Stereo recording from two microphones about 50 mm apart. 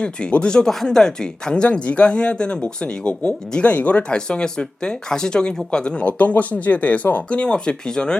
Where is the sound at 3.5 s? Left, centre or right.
Left.